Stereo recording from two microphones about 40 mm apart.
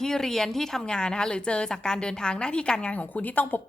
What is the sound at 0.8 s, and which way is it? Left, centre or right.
A woman's voice, left.